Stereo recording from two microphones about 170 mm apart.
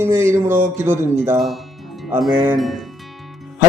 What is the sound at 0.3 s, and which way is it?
Speech, 50° right (ahead or behind).